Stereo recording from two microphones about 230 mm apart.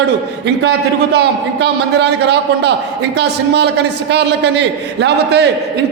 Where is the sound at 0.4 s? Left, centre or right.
Right.